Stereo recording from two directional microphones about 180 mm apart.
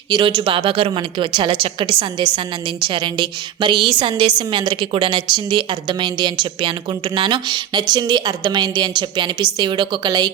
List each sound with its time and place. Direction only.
0.1 s a woman's voice: 25° right (ahead or behind)